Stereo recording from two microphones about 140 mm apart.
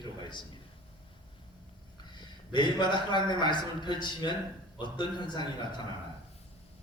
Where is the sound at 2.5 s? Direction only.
35° left (ahead or behind).